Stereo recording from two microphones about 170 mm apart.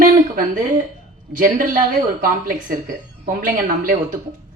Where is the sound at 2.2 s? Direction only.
55° right (ahead or behind).